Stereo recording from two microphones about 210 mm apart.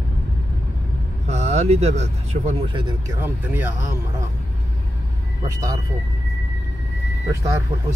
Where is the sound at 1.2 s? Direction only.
30° right (ahead or behind); by 3.9 s 10° right (ahead or behind).